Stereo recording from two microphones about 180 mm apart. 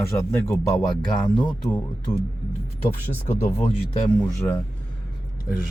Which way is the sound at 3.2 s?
30° left (ahead or behind).